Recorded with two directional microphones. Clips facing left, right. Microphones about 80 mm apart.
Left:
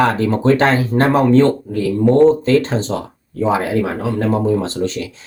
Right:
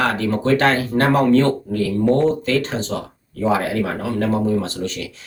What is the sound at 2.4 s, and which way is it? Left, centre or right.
Speech, left.